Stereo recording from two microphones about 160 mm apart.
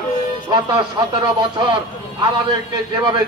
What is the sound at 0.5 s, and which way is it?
Speech, 25° right (ahead or behind).